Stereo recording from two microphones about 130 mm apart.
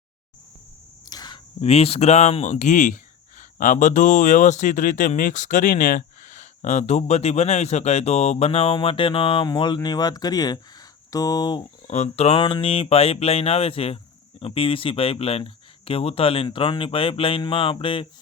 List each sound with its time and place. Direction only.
1.1 s a sound: 35° left (ahead or behind)
1.6 s speech: 50° left (ahead or behind); by 11.6 s 30° left (ahead or behind)
11.9 s speech: 55° left (ahead or behind)